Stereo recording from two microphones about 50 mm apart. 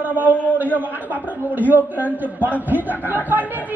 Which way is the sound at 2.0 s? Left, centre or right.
Left.